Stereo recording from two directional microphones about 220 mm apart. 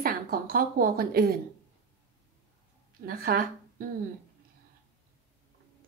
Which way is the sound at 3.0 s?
40° right (ahead or behind).